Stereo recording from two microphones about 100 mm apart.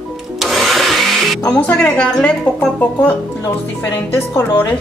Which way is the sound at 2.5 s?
25° left (ahead or behind).